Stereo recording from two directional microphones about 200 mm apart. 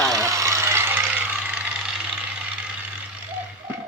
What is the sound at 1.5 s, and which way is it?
Vehicle, 5° right (ahead or behind).